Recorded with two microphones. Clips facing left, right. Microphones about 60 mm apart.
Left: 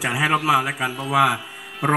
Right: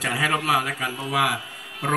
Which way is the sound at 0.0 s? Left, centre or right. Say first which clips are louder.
Left 3 dB; centre.